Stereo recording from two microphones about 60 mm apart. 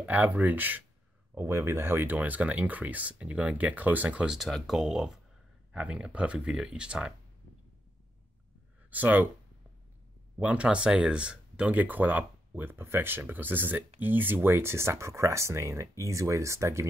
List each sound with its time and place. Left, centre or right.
0.0 s speech: right
1.3 s speech: right
1.9 s speech: right
2.1 s speech: right
4.6 s speech: centre
8.9 s speech: right
10.4 s speech: right